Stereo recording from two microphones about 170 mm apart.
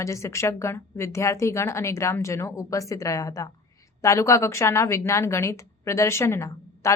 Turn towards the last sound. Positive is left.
turn(degrees=15)  # may be behind; listen again after turning